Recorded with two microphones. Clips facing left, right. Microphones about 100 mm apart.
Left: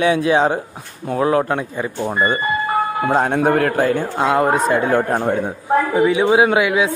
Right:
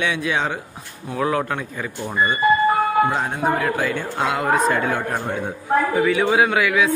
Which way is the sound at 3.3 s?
65° left (ahead or behind).